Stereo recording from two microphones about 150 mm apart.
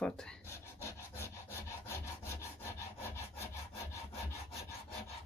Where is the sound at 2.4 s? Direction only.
15° left (ahead or behind).